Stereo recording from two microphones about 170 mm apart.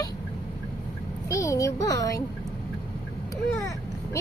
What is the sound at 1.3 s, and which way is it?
Speech, 20° left (ahead or behind).